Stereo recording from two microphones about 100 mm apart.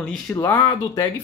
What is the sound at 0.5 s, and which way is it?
Speech, 45° left (ahead or behind).